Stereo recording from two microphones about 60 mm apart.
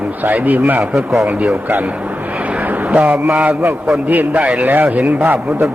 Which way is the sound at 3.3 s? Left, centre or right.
Centre.